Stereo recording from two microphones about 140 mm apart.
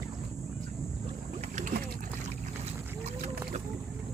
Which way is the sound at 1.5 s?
70° right (ahead or behind).